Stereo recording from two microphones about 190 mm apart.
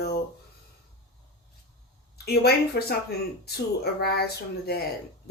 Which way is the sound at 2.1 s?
55° left (ahead or behind).